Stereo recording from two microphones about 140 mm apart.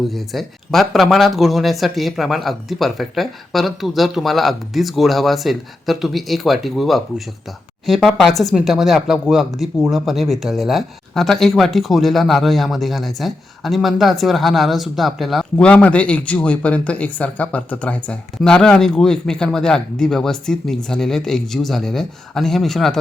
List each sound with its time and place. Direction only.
0.1 s speech: centre (ahead or behind)